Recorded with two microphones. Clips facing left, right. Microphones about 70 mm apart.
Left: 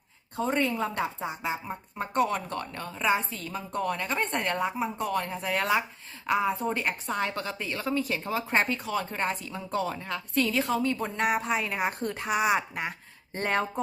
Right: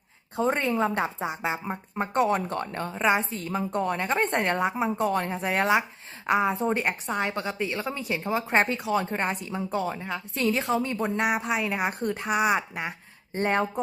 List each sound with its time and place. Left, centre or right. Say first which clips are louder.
0.3 s speech: right 3 dB; right
9.7 s speech: left 1 dB; centre
10.4 s speech: right 3 dB; right
11.2 s speech: even; centre